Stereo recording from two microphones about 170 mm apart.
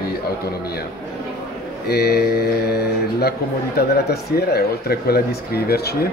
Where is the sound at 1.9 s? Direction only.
70° left (ahead or behind).